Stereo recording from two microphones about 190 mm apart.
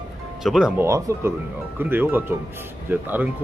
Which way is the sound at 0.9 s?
15° right (ahead or behind).